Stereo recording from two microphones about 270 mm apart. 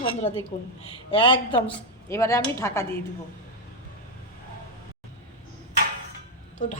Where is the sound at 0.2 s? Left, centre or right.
Left.